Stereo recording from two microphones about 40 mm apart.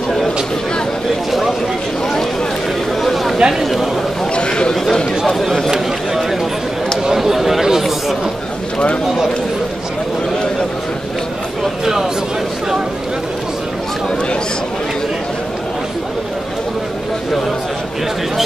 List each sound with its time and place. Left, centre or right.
3.0 s a sound: centre
3.3 s speech: centre
3.6 s a man's voice: centre
4.4 s a man's voice: left
5.2 s speech: centre
7.2 s speech: centre
11.8 s speech: centre